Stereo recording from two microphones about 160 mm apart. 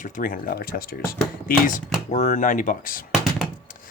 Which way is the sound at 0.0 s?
55° left (ahead or behind).